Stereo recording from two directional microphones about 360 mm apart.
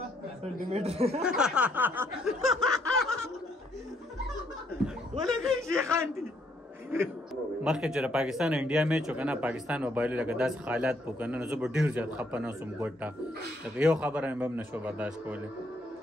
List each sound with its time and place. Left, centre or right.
0.7 s speech: centre
1.2 s snicker: centre
5.2 s chuckle: centre
7.6 s speech: centre